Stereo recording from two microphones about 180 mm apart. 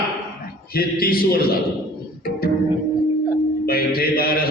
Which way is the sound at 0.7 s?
55° left (ahead or behind).